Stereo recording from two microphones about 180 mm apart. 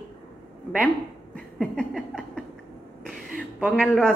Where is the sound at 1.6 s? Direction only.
5° left (ahead or behind).